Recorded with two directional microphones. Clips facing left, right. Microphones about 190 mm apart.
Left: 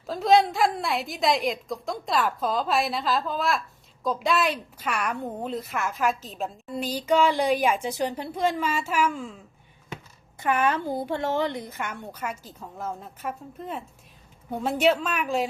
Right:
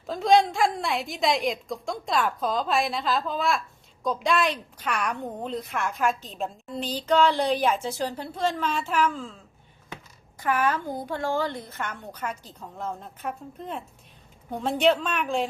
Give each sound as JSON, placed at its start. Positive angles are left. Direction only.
{"t": 0.1, "sound": "a woman's voice", "side_deg": 0}
{"t": 10.4, "sound": "a woman's voice", "side_deg": 25}